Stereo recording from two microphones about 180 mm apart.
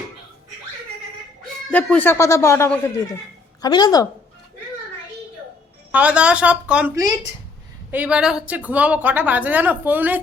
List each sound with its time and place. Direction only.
1.7 s a woman's voice: 10° left (ahead or behind)
5.9 s a woman's voice: 5° right (ahead or behind)